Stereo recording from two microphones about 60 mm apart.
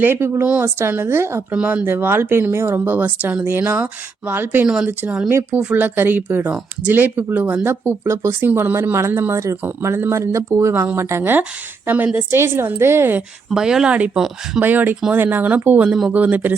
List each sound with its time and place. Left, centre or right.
0.2 s speech: right
1.5 s speech: right
4.6 s speech: centre
5.7 s speech: right
9.3 s speech: right
9.6 s speech: right
11.9 s speech: right
12.3 s speech: right
13.5 s speech: centre
13.9 s speech: right
14.6 s speech: right